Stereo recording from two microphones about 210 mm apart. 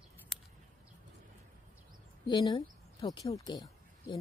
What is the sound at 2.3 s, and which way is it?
Speech, 20° left (ahead or behind).